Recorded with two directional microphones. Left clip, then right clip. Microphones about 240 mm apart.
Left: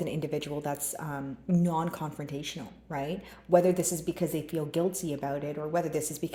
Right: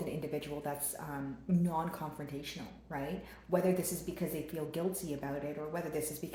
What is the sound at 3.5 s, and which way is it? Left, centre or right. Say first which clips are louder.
Speech: left 8 dB; left.